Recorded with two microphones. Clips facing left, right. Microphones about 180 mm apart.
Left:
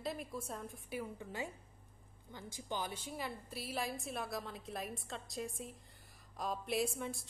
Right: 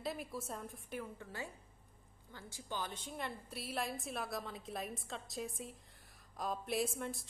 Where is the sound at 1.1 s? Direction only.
15° left (ahead or behind).